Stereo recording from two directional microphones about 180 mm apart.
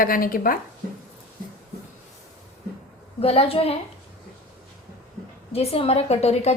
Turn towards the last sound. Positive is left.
turn(degrees=35)  # may be behind; listen again after turning